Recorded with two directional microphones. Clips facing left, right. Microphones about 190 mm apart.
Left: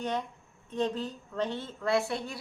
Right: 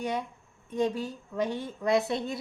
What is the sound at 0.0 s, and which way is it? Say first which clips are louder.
A woman's voice: right 1 dB; 10° right (ahead or behind).